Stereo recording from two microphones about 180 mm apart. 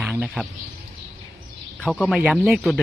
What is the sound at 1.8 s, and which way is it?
Speech, 5° left (ahead or behind).